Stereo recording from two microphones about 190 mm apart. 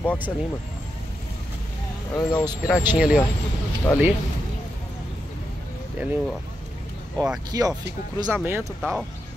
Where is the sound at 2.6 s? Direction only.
5° right (ahead or behind).